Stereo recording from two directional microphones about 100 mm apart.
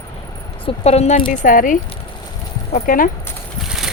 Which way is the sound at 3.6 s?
5° right (ahead or behind).